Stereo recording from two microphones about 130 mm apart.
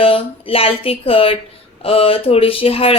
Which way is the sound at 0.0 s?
45° left (ahead or behind).